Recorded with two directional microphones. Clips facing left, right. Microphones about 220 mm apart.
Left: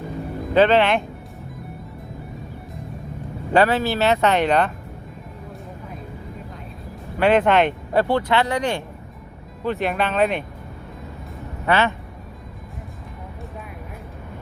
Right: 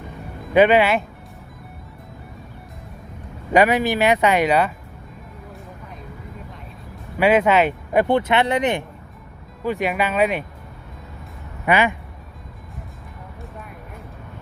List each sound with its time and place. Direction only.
0.5 s speech: 10° right (ahead or behind)
3.5 s speech: 15° right (ahead or behind)
7.2 s speech: 10° right (ahead or behind)
8.0 s speech: 20° right (ahead or behind)
11.6 s speech: 15° right (ahead or behind)